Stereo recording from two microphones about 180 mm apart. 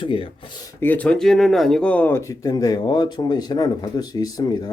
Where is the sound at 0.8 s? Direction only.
10° left (ahead or behind).